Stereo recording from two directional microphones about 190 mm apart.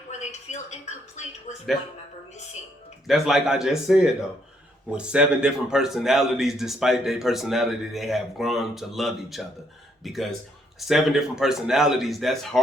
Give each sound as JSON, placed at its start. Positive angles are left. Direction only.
{"t": 0.1, "sound": "a woman's voice", "side_deg": 35}
{"t": 3.1, "sound": "a man's voice", "side_deg": 0}